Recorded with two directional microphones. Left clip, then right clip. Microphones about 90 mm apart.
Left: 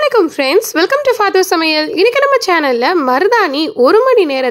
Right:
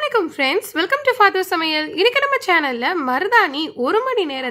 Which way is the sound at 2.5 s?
35° left (ahead or behind).